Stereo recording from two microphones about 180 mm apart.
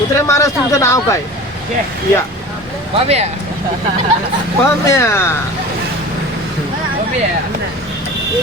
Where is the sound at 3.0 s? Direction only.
35° right (ahead or behind).